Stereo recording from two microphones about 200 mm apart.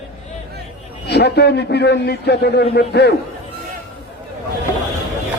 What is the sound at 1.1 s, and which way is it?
A man's voice, 55° left (ahead or behind).